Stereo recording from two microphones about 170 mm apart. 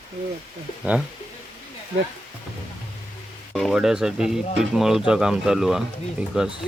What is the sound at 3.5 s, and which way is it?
Speech, centre (ahead or behind).